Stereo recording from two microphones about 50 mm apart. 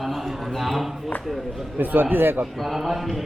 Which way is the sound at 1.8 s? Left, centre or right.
Right.